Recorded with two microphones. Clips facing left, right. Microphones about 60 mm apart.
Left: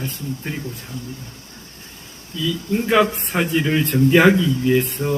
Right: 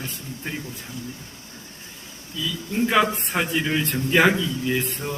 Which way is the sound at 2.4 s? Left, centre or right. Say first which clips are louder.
Left 3 dB; centre.